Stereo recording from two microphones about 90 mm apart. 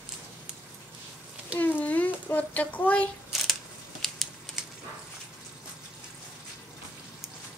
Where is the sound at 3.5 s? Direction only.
5° left (ahead or behind).